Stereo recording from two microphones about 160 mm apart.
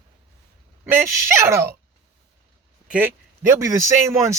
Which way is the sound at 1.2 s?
15° right (ahead or behind).